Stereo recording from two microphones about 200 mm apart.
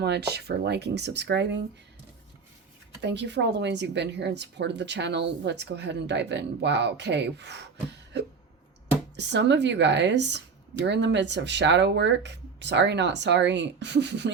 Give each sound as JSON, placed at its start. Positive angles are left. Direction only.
{"t": 0.0, "sound": "speech", "side_deg": -55}
{"t": 3.0, "sound": "speech", "side_deg": -60}
{"t": 9.1, "sound": "speech", "side_deg": -60}